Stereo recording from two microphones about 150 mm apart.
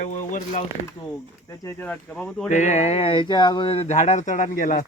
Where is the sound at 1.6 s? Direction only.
10° left (ahead or behind).